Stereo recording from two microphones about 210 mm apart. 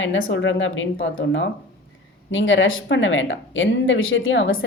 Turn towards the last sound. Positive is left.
turn(degrees=65)  # may be behind; listen again after turning